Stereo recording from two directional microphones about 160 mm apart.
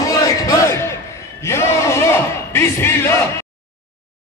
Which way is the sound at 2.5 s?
15° left (ahead or behind).